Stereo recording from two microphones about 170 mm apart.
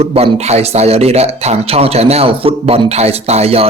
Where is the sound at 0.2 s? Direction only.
40° right (ahead or behind).